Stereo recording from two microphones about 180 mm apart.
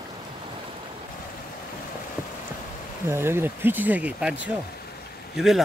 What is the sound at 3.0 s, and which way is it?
Speech, 15° right (ahead or behind).